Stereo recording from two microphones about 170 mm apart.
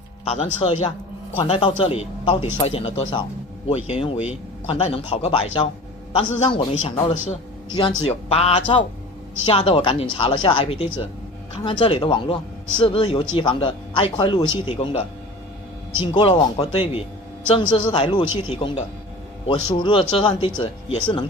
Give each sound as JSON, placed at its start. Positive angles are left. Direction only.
{"t": 0.3, "sound": "speech", "side_deg": 35}
{"t": 16.1, "sound": "speech", "side_deg": 30}